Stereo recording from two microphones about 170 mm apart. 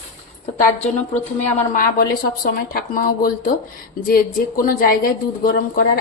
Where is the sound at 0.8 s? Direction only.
40° left (ahead or behind).